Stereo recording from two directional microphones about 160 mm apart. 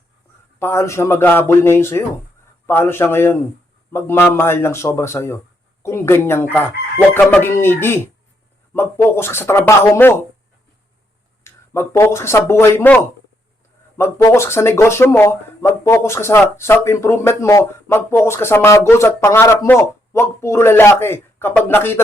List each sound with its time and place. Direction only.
0.6 s speech: 15° left (ahead or behind)
11.4 s speech: 15° left (ahead or behind)